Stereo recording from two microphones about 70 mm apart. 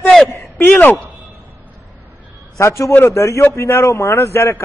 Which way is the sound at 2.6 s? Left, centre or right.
Left.